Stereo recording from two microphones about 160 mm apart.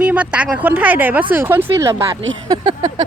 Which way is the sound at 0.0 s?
10° right (ahead or behind).